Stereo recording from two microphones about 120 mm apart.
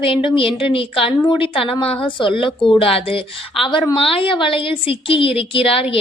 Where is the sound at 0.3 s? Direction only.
45° left (ahead or behind).